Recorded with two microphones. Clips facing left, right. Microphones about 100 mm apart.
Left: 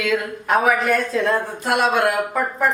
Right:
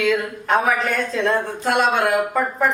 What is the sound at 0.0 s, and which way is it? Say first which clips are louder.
Speech: right 2 dB; 5° left (ahead or behind).